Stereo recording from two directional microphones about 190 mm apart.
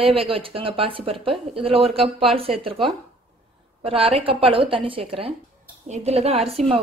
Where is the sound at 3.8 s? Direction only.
30° right (ahead or behind).